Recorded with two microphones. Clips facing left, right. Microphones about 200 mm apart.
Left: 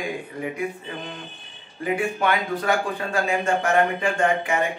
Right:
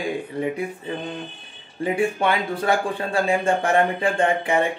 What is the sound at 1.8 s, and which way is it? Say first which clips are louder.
A man's voice: right 2 dB; 30° right (ahead or behind).